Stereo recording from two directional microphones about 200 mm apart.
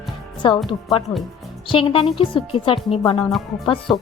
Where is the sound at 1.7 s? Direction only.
25° left (ahead or behind).